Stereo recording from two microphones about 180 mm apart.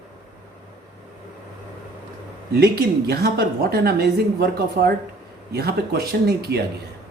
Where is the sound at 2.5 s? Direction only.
60° right (ahead or behind).